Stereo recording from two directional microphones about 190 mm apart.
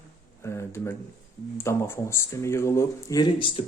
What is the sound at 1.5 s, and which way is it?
Speech, 15° left (ahead or behind).